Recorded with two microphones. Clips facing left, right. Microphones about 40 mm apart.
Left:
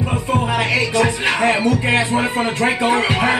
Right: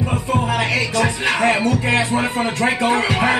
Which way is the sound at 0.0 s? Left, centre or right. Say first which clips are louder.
Left 1 dB; centre.